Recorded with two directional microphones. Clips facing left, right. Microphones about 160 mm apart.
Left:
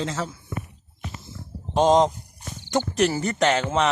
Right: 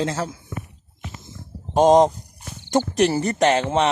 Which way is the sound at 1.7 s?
50° right (ahead or behind).